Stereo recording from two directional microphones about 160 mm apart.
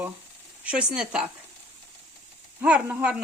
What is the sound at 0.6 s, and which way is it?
Speech, 10° right (ahead or behind).